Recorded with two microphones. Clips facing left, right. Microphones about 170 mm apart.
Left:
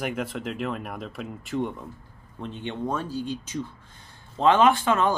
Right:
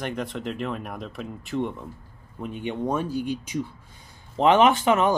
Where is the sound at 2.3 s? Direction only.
10° right (ahead or behind).